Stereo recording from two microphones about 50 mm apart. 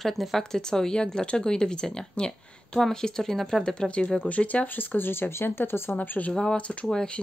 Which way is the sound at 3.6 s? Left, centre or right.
Centre.